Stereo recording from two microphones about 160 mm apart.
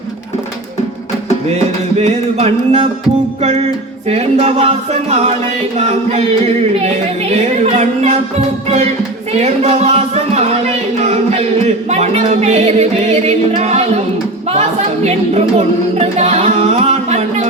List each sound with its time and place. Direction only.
1.5 s music: 45° right (ahead or behind)
4.1 s music: 40° right (ahead or behind)
7.4 s music: 45° right (ahead or behind)
15.0 s music: 40° right (ahead or behind)